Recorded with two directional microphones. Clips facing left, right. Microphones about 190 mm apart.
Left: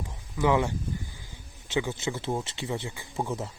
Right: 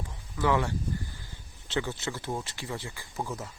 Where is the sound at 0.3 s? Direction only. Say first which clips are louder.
Left 3 dB; 15° left (ahead or behind).